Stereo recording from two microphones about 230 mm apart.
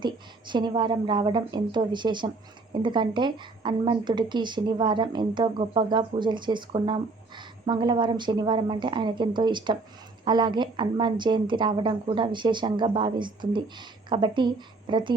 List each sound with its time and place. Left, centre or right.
0.0 s speech: centre